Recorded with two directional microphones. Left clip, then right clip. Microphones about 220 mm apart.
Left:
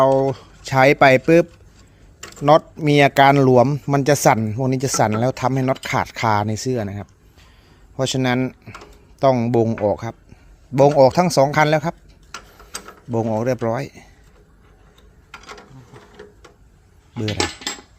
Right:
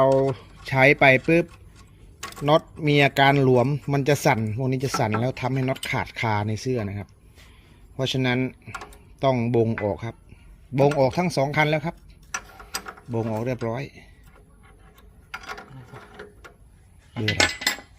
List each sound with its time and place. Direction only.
0.0 s speech: 15° left (ahead or behind)
13.1 s speech: 30° left (ahead or behind)